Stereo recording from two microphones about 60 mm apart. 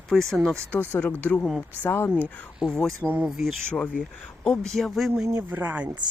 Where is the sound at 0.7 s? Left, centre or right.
Left.